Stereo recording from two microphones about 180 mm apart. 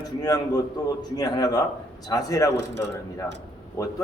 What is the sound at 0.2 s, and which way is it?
A man's voice, 20° left (ahead or behind).